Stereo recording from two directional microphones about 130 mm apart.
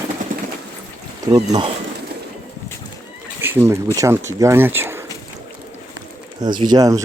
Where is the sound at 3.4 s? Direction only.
15° right (ahead or behind).